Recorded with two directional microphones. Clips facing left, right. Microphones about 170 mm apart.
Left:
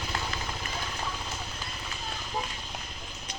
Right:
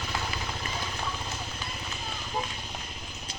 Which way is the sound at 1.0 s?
Centre (ahead or behind).